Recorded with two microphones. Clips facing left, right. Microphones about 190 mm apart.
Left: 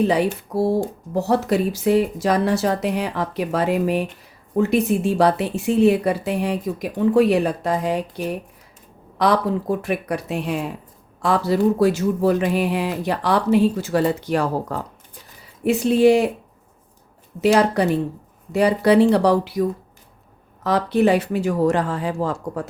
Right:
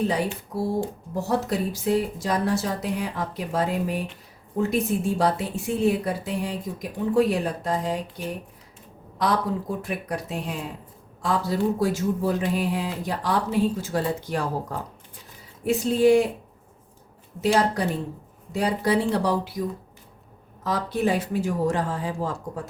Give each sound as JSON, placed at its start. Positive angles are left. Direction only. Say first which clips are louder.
{"t": 0.1, "sound": "speech", "louder": "left 6 dB", "side_deg": 70}
{"t": 17.4, "sound": "speech", "louder": "left 5 dB", "side_deg": 70}
{"t": 20.7, "sound": "speech", "louder": "left 7 dB", "side_deg": 70}